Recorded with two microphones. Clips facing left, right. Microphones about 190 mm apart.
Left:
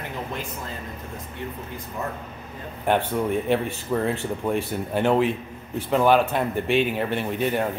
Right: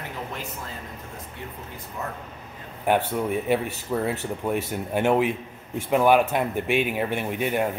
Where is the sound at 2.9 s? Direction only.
10° right (ahead or behind).